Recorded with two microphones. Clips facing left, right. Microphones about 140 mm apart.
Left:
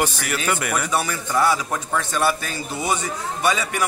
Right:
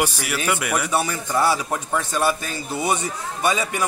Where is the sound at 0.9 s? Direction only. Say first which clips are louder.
Left 1 dB; 25° right (ahead or behind).